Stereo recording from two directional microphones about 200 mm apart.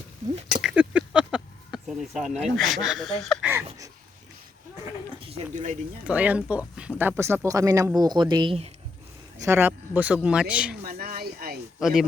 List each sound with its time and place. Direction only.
0.5 s a sound: 5° right (ahead or behind)
2.6 s speech: centre (ahead or behind)
5.2 s speech: 35° right (ahead or behind)
6.1 s speech: 5° right (ahead or behind); by 8.7 s 30° right (ahead or behind)
9.4 s speech: 10° right (ahead or behind)
10.8 s a sound: 45° right (ahead or behind)
11.8 s speech: 5° right (ahead or behind)